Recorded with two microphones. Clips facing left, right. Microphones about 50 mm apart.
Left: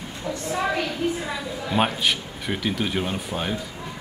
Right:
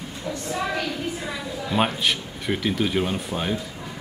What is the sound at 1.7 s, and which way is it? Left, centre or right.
Speech, centre.